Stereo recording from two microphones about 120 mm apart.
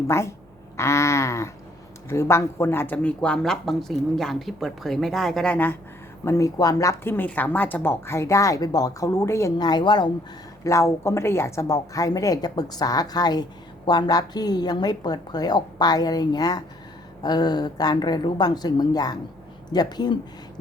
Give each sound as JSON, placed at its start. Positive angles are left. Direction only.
{"t": 0.1, "sound": "speech", "side_deg": 20}
{"t": 6.2, "sound": "speech", "side_deg": 25}
{"t": 9.6, "sound": "a woman's voice", "side_deg": 35}
{"t": 10.6, "sound": "a woman's voice", "side_deg": 25}